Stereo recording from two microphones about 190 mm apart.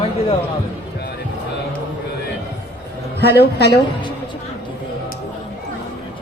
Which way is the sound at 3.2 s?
55° left (ahead or behind).